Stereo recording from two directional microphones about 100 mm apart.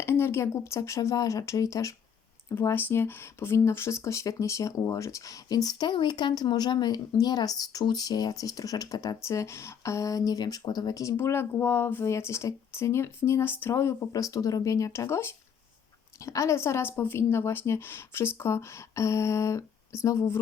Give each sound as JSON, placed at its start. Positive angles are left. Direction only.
{"t": 0.0, "sound": "speech", "side_deg": 25}
{"t": 11.2, "sound": "a woman's voice", "side_deg": 25}